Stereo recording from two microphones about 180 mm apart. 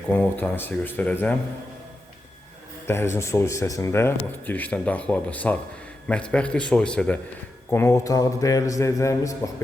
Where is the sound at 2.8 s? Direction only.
15° left (ahead or behind).